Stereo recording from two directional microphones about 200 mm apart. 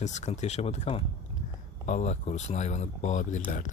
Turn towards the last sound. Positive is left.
turn(degrees=35)  # may be behind; listen again after turning